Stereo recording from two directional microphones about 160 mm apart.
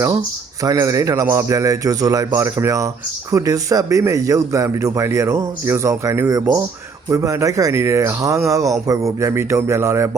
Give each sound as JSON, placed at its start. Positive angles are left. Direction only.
{"t": 0.6, "sound": "a man's voice", "side_deg": -20}